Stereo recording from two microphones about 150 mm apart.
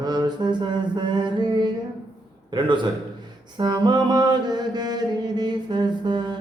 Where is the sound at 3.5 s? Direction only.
30° right (ahead or behind).